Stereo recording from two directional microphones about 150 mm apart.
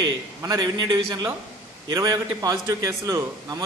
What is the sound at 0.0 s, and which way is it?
A man's voice, 25° right (ahead or behind).